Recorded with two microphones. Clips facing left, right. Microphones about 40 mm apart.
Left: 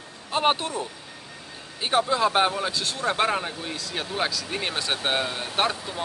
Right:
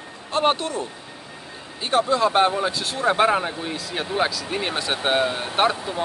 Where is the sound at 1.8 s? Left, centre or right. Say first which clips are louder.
Right 2 dB; centre.